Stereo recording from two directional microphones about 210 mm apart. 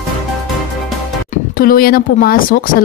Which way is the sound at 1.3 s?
45° left (ahead or behind).